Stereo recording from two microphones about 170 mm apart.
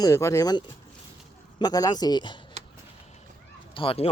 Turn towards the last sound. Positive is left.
turn(degrees=30)  # may be behind; listen again after turning